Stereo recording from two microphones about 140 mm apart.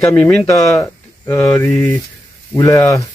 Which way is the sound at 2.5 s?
20° left (ahead or behind).